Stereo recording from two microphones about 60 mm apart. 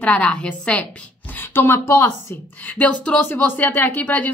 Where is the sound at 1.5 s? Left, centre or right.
Left.